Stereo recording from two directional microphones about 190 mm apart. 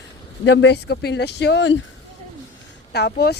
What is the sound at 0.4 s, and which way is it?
Speech, 65° left (ahead or behind).